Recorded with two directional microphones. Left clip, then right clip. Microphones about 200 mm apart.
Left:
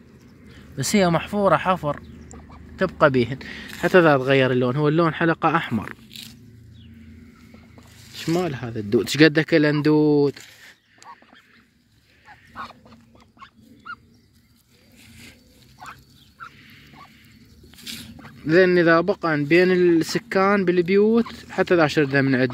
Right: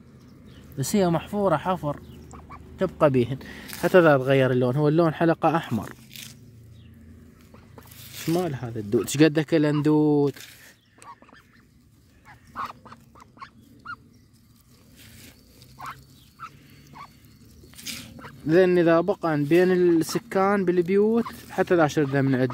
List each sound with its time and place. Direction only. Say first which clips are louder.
0.7 s speech: left 4 dB; 5° right (ahead or behind)
8.4 s speech: left 3 dB; 10° right (ahead or behind)
12.5 s a sound: right 3 dB; 15° right (ahead or behind)
17.7 s dog: left 1 dB; 65° right (ahead or behind)
18.4 s speech: left 3 dB; 15° right (ahead or behind)